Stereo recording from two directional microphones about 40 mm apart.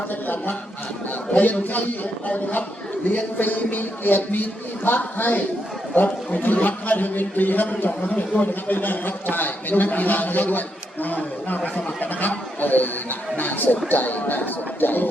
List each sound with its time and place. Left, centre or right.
1.3 s a man's voice: left